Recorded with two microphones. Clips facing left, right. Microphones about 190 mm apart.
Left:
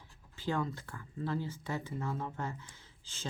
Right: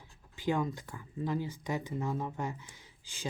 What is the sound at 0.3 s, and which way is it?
Speech, 15° right (ahead or behind).